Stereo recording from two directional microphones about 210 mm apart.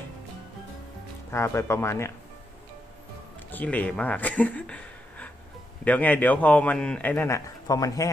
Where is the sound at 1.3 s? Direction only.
10° left (ahead or behind).